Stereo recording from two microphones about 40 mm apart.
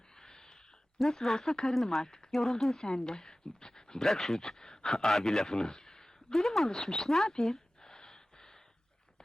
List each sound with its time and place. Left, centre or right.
0.2 s a sound: centre
1.0 s speech: centre
4.0 s speech: centre
7.8 s gasp: centre